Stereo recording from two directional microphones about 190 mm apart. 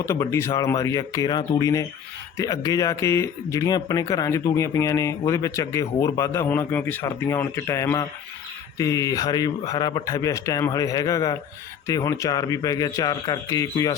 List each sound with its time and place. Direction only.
0.0 s a man's voice: 15° left (ahead or behind)